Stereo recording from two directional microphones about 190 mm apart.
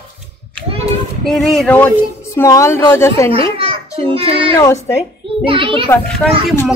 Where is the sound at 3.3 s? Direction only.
30° right (ahead or behind).